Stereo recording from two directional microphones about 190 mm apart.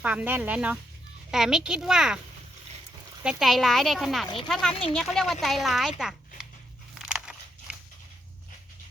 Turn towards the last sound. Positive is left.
turn(degrees=-5)  # may be behind; listen again after turning